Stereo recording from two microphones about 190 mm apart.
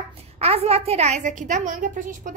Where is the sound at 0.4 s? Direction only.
30° right (ahead or behind).